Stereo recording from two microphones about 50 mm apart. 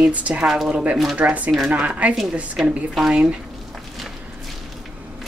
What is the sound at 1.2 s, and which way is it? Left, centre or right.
Speech, right.